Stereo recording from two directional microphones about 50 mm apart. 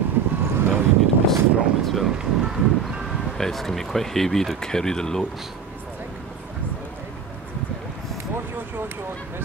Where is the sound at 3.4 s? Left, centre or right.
Centre.